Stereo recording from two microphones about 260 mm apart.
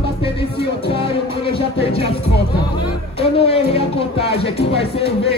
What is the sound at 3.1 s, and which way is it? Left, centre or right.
Speech, left.